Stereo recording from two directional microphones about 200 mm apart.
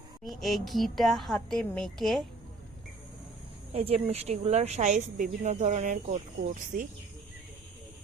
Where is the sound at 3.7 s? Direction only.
30° right (ahead or behind).